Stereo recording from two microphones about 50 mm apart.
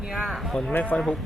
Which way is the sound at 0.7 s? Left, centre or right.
Left.